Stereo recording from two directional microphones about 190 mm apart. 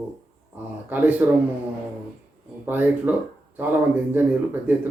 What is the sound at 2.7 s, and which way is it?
Speech, 10° right (ahead or behind).